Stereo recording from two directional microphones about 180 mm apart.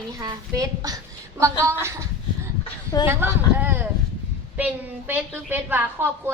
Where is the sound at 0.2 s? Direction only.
20° right (ahead or behind).